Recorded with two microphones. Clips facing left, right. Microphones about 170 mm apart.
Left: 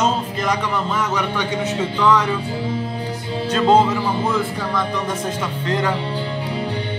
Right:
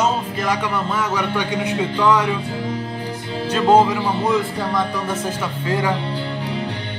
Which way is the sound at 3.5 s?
10° right (ahead or behind).